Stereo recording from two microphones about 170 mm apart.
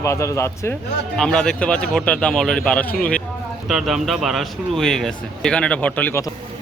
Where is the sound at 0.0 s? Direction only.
15° left (ahead or behind).